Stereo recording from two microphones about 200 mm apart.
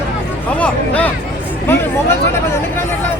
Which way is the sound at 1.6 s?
10° left (ahead or behind).